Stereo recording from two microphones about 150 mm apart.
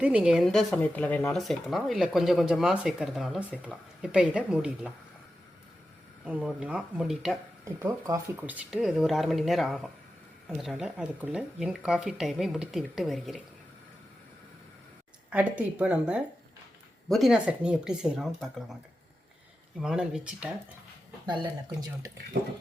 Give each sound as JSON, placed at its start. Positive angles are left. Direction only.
{"t": 0.0, "sound": "speech", "side_deg": -10}
{"t": 6.2, "sound": "speech", "side_deg": -5}
{"t": 7.6, "sound": "speech", "side_deg": -20}
{"t": 15.3, "sound": "a woman's voice", "side_deg": -10}
{"t": 19.8, "sound": "speech", "side_deg": -5}
{"t": 21.2, "sound": "speech", "side_deg": -25}